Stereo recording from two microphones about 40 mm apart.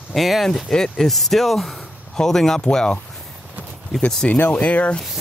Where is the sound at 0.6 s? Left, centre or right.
Centre.